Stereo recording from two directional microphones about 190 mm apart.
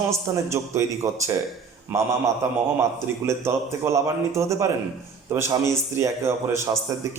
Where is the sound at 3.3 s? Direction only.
15° right (ahead or behind).